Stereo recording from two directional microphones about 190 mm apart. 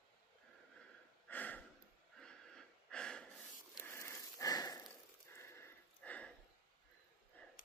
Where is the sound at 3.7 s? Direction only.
15° left (ahead or behind).